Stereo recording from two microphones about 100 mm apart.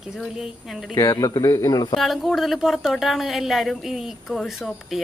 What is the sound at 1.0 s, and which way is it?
Speech, 35° left (ahead or behind).